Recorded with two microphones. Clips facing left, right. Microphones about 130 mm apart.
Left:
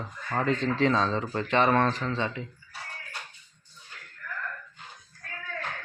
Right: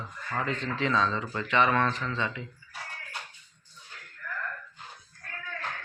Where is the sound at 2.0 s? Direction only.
30° left (ahead or behind).